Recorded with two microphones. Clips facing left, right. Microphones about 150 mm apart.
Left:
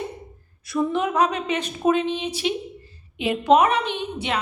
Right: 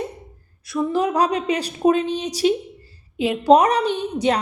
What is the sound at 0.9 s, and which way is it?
A woman's voice, 35° right (ahead or behind).